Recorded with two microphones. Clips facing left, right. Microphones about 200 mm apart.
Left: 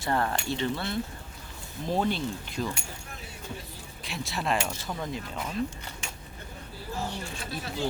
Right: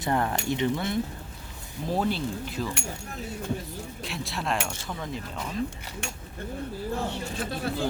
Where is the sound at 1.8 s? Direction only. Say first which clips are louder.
Right 1 dB; 5° right (ahead or behind).